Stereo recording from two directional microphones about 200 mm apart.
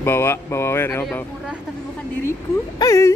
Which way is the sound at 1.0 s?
Centre (ahead or behind).